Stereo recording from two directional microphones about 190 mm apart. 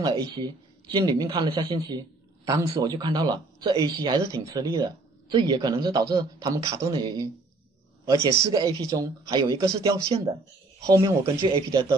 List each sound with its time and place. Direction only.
0.0 s a man's voice: 25° right (ahead or behind)
8.4 s a man's voice: 15° right (ahead or behind)
10.8 s a man's voice: 15° right (ahead or behind)